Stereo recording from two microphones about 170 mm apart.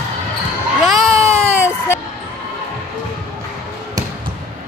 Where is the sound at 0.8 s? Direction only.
Centre (ahead or behind).